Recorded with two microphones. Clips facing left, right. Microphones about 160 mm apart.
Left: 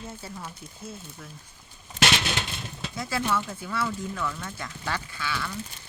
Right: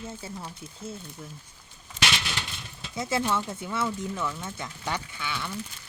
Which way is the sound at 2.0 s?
50° left (ahead or behind).